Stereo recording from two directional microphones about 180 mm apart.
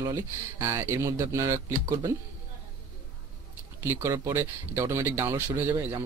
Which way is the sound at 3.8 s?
15° right (ahead or behind).